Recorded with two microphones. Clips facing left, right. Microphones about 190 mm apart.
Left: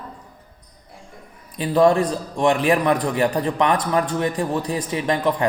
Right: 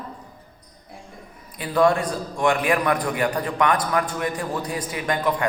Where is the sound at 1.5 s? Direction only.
25° left (ahead or behind).